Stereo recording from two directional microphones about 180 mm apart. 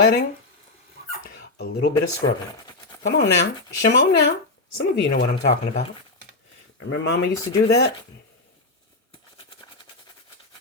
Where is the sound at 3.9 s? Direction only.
80° left.